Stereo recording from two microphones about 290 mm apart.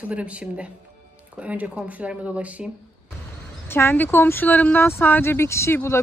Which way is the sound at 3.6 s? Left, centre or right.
Centre.